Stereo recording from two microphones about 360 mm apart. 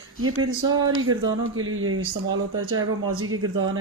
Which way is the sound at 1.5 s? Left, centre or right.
Right.